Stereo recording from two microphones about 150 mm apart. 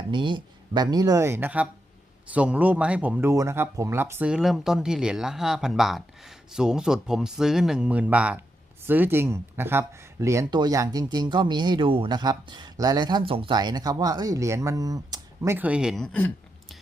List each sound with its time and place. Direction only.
0.1 s speech: 30° right (ahead or behind); by 16.3 s 5° left (ahead or behind)